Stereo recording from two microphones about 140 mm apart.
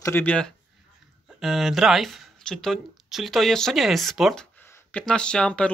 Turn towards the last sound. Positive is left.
turn(degrees=5)  # may be behind; listen again after turning